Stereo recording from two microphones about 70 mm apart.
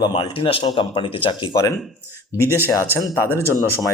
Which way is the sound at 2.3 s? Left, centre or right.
Left.